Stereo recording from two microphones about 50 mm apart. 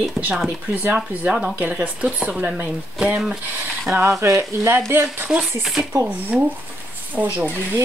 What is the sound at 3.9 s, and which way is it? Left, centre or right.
Speech, right.